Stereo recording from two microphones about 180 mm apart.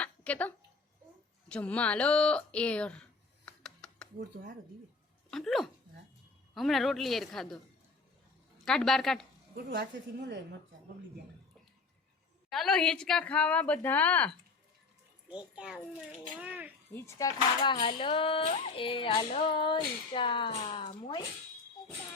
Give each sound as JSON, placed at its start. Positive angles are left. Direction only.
{"t": 0.0, "sound": "a sound", "side_deg": 10}
{"t": 1.5, "sound": "speech", "side_deg": 5}
{"t": 3.4, "sound": "a sound", "side_deg": 5}
{"t": 5.3, "sound": "speech", "side_deg": 0}
{"t": 8.6, "sound": "speech", "side_deg": 5}
{"t": 9.6, "sound": "a woman's voice", "side_deg": -70}
{"t": 12.5, "sound": "speech", "side_deg": 0}
{"t": 15.5, "sound": "a child's voice", "side_deg": -5}
{"t": 16.9, "sound": "speech", "side_deg": 15}